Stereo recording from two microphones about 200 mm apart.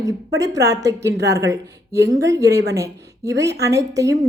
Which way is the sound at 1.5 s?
15° right (ahead or behind).